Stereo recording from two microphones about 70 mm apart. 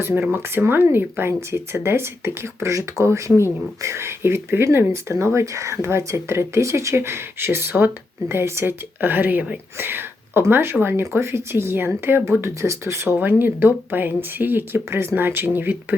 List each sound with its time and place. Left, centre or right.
0.1 s speech: right
13.1 s speech: right